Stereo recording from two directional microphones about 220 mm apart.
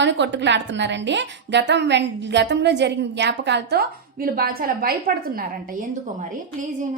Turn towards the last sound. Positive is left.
turn(degrees=-40)  # may be behind; listen again after turning